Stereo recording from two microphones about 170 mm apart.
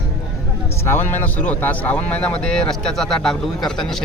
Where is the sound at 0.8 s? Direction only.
15° left (ahead or behind).